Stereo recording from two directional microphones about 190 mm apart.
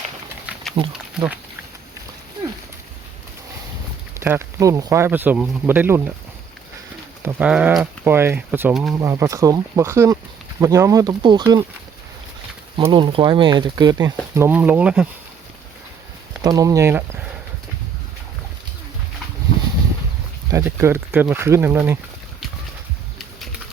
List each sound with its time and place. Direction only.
0.8 s speech: 25° right (ahead or behind)
4.2 s speech: 10° right (ahead or behind)
7.3 s speech: 5° right (ahead or behind)
9.0 s speech: 15° right (ahead or behind)
12.7 s speech: 25° right (ahead or behind)
14.3 s speech: 10° right (ahead or behind)
16.4 s speech: 20° right (ahead or behind)
20.5 s speech: 15° right (ahead or behind)